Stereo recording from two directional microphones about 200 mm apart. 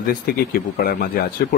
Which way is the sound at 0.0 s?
50° left (ahead or behind).